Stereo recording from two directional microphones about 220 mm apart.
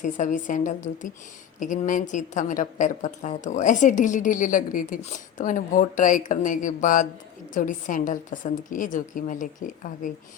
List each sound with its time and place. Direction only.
0.0 s a woman's voice: 35° left (ahead or behind)